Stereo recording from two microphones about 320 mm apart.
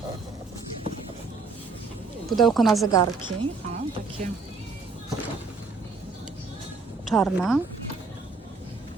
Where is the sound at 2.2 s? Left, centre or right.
Centre.